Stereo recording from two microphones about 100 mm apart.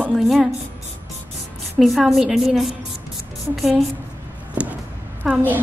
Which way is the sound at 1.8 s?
Centre (ahead or behind).